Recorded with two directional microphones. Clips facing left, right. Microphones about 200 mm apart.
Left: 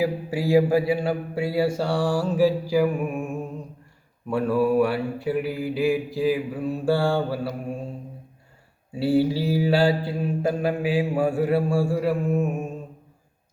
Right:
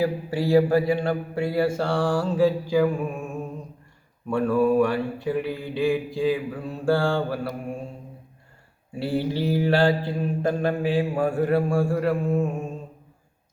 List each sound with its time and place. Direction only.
0.0 s mantra: 10° left (ahead or behind)
4.3 s mantra: 5° left (ahead or behind)
9.0 s mantra: 5° left (ahead or behind)